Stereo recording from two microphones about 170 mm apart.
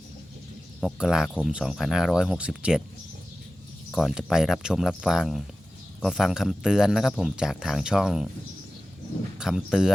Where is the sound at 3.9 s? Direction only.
Centre (ahead or behind).